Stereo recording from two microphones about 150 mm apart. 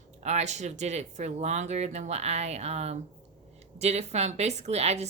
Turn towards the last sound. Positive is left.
turn(degrees=-45)  # may be behind; listen again after turning